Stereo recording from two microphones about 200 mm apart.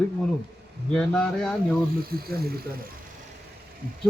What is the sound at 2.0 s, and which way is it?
Speech, 50° right (ahead or behind).